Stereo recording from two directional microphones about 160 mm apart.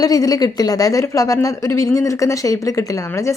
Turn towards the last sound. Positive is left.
turn(degrees=20)  # may be behind; listen again after turning